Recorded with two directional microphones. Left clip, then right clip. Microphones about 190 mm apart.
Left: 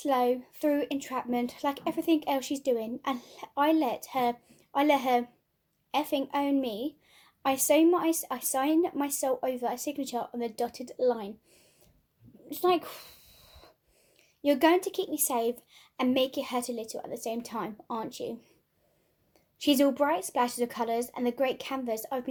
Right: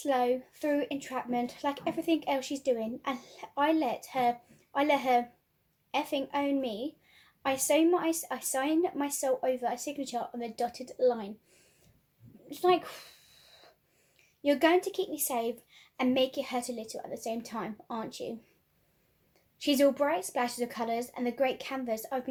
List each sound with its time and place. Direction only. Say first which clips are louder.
0.0 s a woman's voice: left 2 dB; 45° left (ahead or behind)
12.5 s a sound: even; 45° left (ahead or behind)
14.4 s a woman's voice: left 1 dB; 45° left (ahead or behind)
19.5 s a woman's voice: left 1 dB; 45° left (ahead or behind)